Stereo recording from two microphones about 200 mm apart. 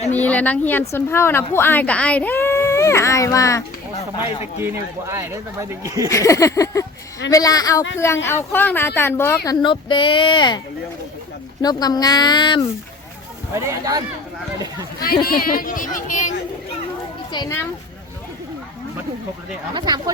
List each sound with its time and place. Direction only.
0.1 s a woman's voice: 10° left (ahead or behind)
4.6 s speech: 15° right (ahead or behind)
6.1 s a woman's voice: 15° left (ahead or behind)
11.6 s a child's voice: 20° left (ahead or behind)
13.7 s speech: 20° right (ahead or behind)
15.0 s speech: 50° left (ahead or behind)
17.3 s a woman's voice: 15° left (ahead or behind)
19.7 s speech: 20° right (ahead or behind)